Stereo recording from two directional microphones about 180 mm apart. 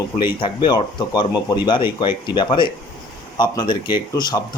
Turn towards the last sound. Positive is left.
turn(degrees=25)  # may be behind; listen again after turning